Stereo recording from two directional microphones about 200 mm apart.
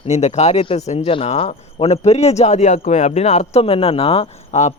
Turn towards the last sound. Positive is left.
turn(degrees=35)  # may be behind; listen again after turning